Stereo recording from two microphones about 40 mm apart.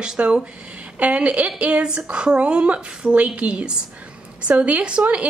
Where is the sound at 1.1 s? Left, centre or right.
Right.